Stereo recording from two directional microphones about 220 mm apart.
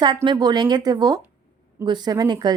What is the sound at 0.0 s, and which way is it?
A woman's voice, 20° right (ahead or behind).